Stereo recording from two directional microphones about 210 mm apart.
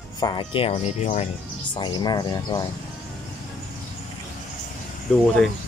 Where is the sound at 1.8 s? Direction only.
20° left (ahead or behind).